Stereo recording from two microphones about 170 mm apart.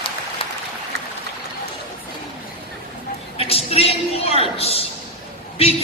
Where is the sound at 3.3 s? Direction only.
35° left (ahead or behind).